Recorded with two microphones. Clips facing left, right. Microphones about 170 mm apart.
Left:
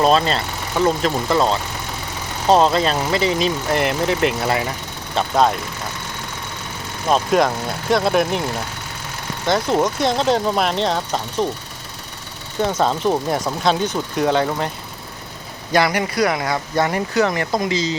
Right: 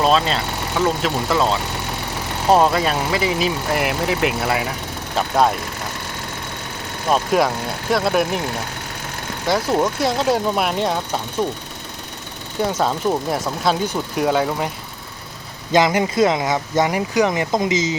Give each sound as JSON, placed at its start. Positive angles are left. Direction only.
{"t": 0.0, "sound": "speech", "side_deg": 0}
{"t": 7.1, "sound": "speech", "side_deg": -5}
{"t": 9.5, "sound": "speech", "side_deg": -5}
{"t": 12.6, "sound": "speech", "side_deg": -5}
{"t": 15.7, "sound": "speech", "side_deg": -20}